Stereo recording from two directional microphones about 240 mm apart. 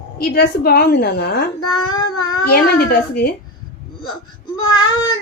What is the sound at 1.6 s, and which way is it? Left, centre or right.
Speech, left.